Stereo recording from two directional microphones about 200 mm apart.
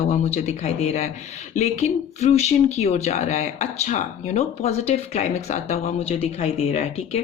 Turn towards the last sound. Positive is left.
turn(degrees=30)  # may be behind; listen again after turning